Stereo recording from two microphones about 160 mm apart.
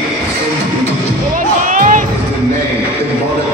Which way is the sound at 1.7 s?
55° right (ahead or behind).